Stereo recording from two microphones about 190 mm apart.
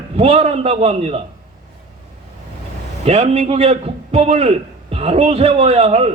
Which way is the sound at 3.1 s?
30° right (ahead or behind).